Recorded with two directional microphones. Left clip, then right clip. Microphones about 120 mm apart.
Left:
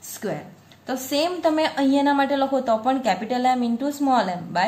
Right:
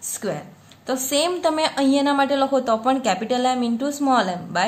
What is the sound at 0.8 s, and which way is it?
A woman's voice, 40° right (ahead or behind).